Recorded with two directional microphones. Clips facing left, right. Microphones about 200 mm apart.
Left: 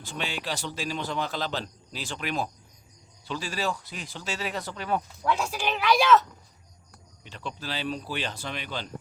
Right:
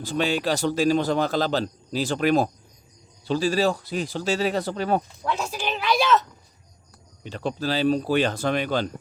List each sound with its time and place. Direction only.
0.0 s a man's voice: 40° right (ahead or behind)
5.3 s speech: 10° left (ahead or behind)
7.3 s speech: 40° right (ahead or behind)